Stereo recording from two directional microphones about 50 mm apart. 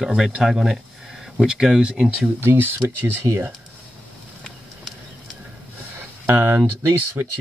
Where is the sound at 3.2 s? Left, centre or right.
Right.